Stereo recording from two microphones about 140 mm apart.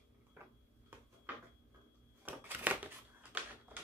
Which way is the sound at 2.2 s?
10° right (ahead or behind).